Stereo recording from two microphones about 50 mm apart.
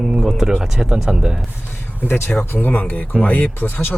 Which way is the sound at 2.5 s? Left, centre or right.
Left.